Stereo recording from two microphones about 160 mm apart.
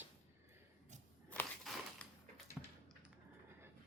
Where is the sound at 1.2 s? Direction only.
10° left (ahead or behind).